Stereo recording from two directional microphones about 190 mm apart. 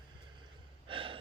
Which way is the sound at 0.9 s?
30° right (ahead or behind).